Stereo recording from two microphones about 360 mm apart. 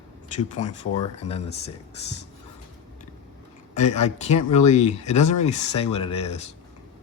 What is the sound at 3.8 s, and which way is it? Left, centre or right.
Speech, centre.